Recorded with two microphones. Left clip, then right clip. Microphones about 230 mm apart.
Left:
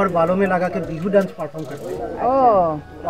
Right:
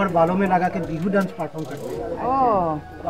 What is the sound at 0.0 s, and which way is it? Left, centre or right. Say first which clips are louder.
Speech: left 2 dB; left.